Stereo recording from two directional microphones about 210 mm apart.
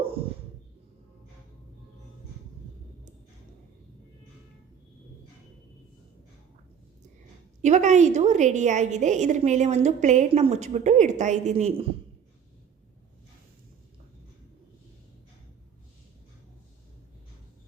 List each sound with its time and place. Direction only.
7.6 s a woman's voice: 35° right (ahead or behind)